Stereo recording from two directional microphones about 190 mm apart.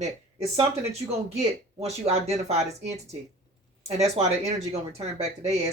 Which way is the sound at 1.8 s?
35° right (ahead or behind).